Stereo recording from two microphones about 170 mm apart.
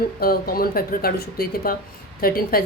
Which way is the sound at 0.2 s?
60° left (ahead or behind).